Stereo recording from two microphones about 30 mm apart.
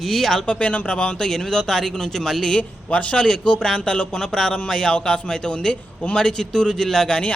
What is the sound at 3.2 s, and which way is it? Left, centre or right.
A man's voice, left.